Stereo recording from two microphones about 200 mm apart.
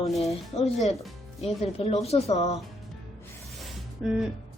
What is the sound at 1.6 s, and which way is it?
Speech, 30° left (ahead or behind).